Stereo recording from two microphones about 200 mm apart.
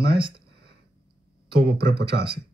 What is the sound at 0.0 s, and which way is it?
Speech, 25° right (ahead or behind).